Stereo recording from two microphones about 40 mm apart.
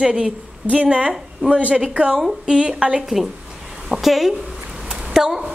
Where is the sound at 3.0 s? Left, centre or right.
Centre.